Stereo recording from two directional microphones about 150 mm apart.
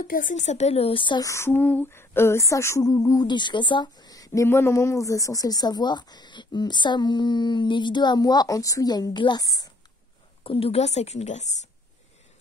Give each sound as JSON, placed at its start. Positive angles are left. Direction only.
{"t": 0.0, "sound": "a woman's voice", "side_deg": 65}
{"t": 1.3, "sound": "a sound", "side_deg": 15}
{"t": 10.4, "sound": "a woman's voice", "side_deg": 40}